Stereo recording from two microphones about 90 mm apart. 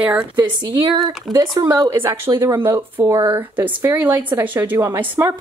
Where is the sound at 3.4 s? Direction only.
20° right (ahead or behind).